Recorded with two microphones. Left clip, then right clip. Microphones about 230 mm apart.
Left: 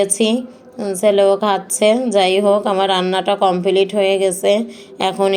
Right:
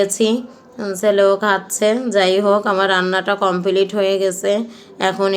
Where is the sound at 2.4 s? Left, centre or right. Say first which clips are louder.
Left 1 dB; centre.